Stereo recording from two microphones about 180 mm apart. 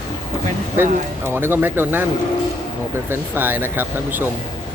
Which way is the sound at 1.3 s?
10° right (ahead or behind).